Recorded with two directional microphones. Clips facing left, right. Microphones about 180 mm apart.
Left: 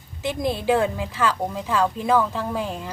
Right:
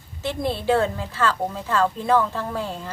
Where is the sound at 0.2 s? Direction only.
15° left (ahead or behind).